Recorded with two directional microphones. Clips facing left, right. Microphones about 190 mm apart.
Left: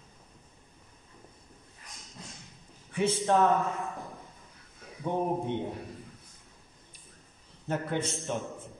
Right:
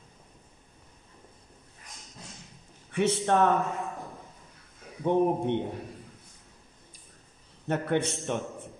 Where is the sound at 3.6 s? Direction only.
Centre (ahead or behind).